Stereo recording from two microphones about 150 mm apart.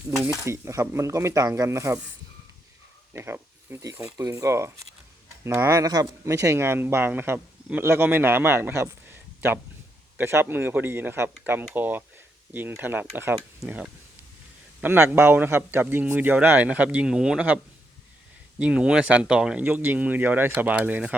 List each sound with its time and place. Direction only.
0.2 s speech: 20° right (ahead or behind)
3.1 s speech: 15° right (ahead or behind)
18.6 s speech: 5° right (ahead or behind)